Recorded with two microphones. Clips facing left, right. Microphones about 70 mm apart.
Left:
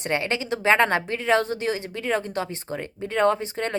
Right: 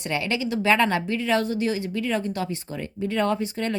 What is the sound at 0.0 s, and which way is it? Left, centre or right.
Speech, left.